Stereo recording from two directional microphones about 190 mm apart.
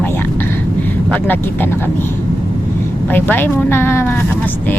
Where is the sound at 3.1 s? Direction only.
10° left (ahead or behind).